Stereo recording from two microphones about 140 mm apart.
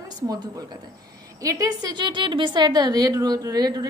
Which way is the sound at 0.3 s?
25° right (ahead or behind).